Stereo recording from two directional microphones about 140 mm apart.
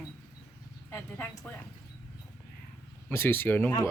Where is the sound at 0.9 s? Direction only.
15° left (ahead or behind).